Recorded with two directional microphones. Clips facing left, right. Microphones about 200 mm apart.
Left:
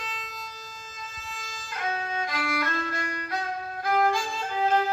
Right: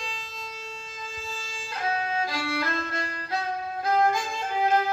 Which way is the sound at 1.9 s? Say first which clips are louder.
Right 2 dB; 30° right (ahead or behind).